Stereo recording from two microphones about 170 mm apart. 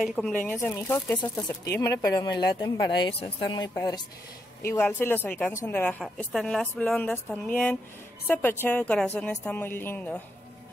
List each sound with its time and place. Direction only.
0.0 s a woman's voice: centre (ahead or behind)